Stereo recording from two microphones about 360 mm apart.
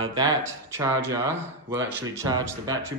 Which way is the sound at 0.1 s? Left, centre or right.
Centre.